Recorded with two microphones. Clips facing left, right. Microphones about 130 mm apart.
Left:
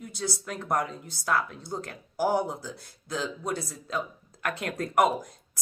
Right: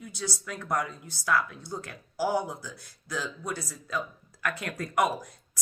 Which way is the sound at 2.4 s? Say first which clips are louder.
Left 2 dB; 25° left (ahead or behind).